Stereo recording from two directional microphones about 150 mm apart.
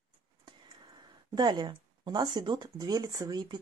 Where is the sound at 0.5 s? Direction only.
30° right (ahead or behind).